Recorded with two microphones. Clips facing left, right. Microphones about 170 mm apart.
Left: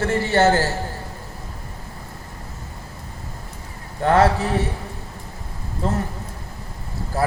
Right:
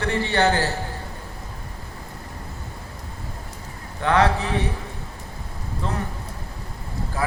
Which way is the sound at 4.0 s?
45° left (ahead or behind).